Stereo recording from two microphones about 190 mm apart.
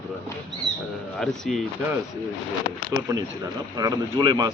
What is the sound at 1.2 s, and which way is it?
Speech, centre (ahead or behind).